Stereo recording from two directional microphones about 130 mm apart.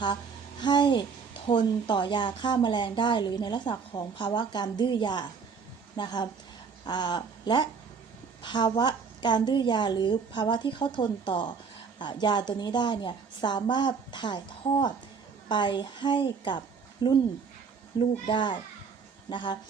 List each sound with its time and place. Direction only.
0.6 s speech: 35° left (ahead or behind)
18.3 s speech: 40° left (ahead or behind)